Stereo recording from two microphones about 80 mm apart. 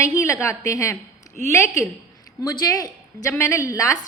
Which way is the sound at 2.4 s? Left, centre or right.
Left.